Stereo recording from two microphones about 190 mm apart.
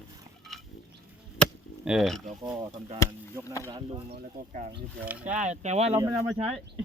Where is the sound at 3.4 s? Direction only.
15° left (ahead or behind).